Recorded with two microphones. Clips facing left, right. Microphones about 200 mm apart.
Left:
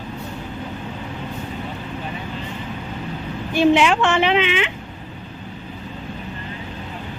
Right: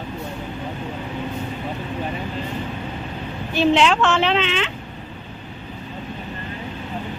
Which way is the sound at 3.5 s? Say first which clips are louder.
Left 2 dB; 10° left (ahead or behind).